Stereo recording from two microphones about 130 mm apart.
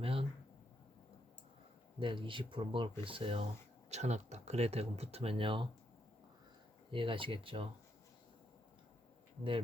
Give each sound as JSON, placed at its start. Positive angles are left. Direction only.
{"t": 0.0, "sound": "a sound", "side_deg": -45}
{"t": 2.0, "sound": "speech", "side_deg": -40}
{"t": 3.8, "sound": "speech", "side_deg": -60}
{"t": 6.9, "sound": "speech", "side_deg": -40}